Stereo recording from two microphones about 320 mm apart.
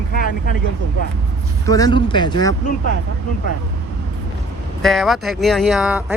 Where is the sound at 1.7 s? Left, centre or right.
Centre.